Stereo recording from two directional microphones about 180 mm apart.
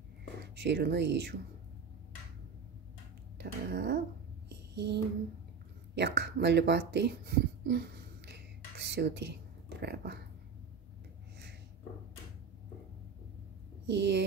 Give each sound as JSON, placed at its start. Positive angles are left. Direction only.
{"t": 0.6, "sound": "speech", "side_deg": -65}
{"t": 3.3, "sound": "a sound", "side_deg": -65}
{"t": 5.9, "sound": "speech", "side_deg": -65}
{"t": 13.8, "sound": "speech", "side_deg": -75}